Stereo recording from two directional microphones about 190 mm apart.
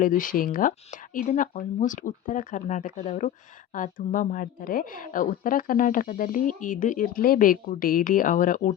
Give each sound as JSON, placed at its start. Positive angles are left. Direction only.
{"t": 0.0, "sound": "a woman's voice", "side_deg": 45}